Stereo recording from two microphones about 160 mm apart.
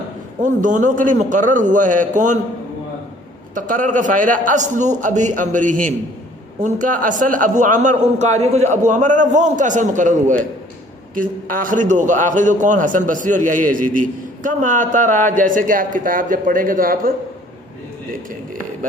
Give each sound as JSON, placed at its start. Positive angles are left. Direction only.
{"t": 0.4, "sound": "a man's voice", "side_deg": -50}
{"t": 3.5, "sound": "a man's voice", "side_deg": -55}